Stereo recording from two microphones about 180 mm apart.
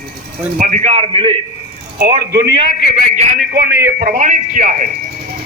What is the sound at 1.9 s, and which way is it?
Speech, 60° right (ahead or behind).